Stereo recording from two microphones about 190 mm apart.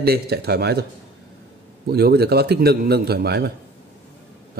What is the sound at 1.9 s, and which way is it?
A man's voice, 55° right (ahead or behind).